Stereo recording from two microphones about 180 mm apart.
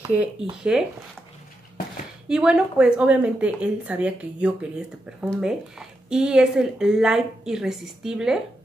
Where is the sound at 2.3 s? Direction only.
5° right (ahead or behind).